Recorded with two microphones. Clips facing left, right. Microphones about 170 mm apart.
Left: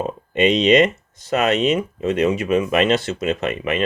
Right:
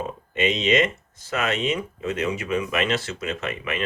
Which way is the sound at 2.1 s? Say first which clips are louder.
Left 7 dB; 60° left (ahead or behind).